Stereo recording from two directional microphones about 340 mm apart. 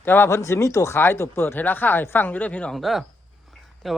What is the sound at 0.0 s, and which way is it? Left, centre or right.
Speech, centre.